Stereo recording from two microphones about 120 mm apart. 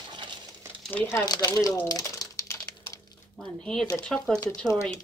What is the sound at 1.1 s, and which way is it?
Speech, 35° left (ahead or behind).